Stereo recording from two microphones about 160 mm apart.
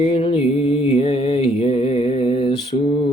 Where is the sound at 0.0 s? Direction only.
35° left (ahead or behind).